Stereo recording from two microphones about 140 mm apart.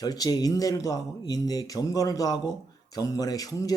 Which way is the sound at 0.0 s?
25° left (ahead or behind).